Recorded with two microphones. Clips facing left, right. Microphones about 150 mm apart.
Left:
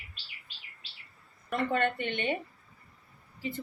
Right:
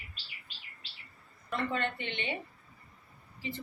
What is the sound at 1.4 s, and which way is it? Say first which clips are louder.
Speech: left 4 dB; 55° left (ahead or behind).